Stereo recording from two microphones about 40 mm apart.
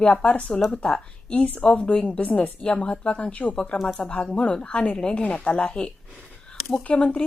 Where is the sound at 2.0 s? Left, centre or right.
Left.